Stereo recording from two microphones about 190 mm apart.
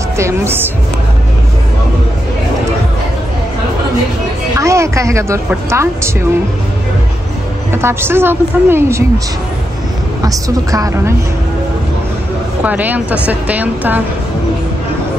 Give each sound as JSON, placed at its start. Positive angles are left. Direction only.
{"t": 0.2, "sound": "a woman's voice", "side_deg": -15}
{"t": 4.6, "sound": "a woman's voice", "side_deg": -15}
{"t": 7.7, "sound": "a woman's voice", "side_deg": -10}
{"t": 10.2, "sound": "a woman's voice", "side_deg": -20}
{"t": 12.6, "sound": "a woman's voice", "side_deg": -10}